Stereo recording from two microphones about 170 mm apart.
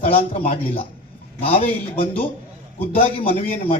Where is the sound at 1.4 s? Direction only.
35° left (ahead or behind).